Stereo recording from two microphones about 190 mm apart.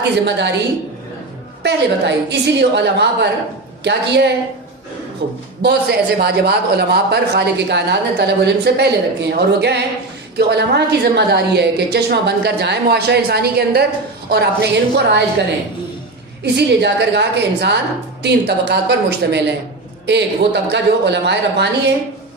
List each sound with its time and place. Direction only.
0.3 s a woman's voice: 65° right (ahead or behind)
1.6 s a woman's voice: 65° right (ahead or behind)
16.4 s a woman's voice: 60° right (ahead or behind)